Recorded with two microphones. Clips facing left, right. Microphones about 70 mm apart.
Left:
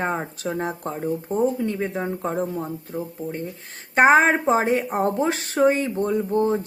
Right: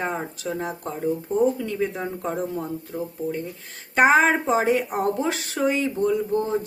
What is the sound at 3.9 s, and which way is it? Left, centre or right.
Speech, left.